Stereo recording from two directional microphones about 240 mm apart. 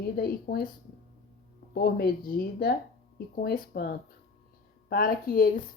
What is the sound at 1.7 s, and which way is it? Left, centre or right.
A woman's voice, left.